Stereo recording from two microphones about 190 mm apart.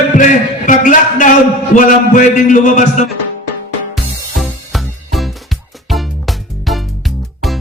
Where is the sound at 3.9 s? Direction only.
Centre (ahead or behind).